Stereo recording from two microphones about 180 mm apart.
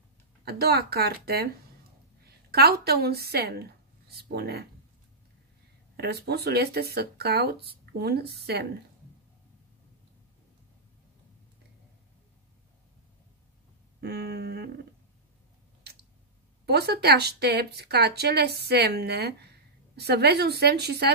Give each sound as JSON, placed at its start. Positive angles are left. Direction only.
{"t": 0.5, "sound": "speech", "side_deg": -60}
{"t": 2.5, "sound": "speech", "side_deg": -60}
{"t": 5.9, "sound": "speech", "side_deg": -65}
{"t": 14.0, "sound": "speech", "side_deg": -65}
{"t": 16.6, "sound": "speech", "side_deg": -65}